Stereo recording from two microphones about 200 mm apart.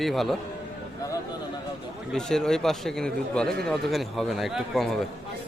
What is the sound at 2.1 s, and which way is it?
A man's voice, centre (ahead or behind).